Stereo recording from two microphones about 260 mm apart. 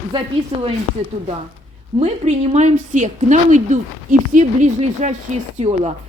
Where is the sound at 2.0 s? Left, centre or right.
Right.